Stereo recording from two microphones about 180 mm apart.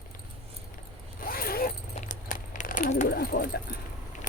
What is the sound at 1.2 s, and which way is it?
Zipper, 55° left (ahead or behind).